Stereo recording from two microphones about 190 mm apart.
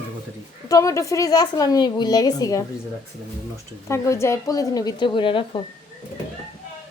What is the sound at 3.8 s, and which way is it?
A woman's voice, 15° left (ahead or behind).